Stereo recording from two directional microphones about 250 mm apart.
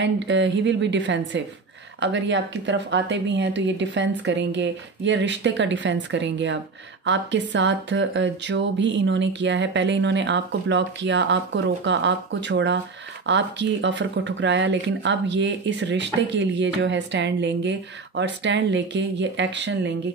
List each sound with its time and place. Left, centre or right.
0.0 s speech: right